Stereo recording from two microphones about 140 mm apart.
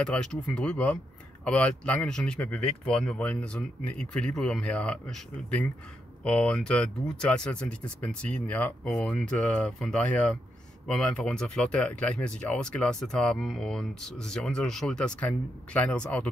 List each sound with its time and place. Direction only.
0.0 s speech: 5° left (ahead or behind)